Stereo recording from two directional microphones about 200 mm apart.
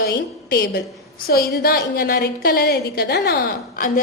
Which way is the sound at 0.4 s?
50° left (ahead or behind).